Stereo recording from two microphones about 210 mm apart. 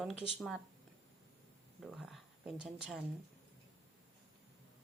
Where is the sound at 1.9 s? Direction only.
Centre (ahead or behind).